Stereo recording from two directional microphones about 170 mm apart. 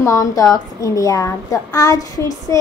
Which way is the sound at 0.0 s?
20° left (ahead or behind).